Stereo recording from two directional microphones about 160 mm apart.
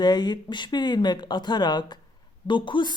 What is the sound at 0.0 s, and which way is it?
Speech, 25° left (ahead or behind).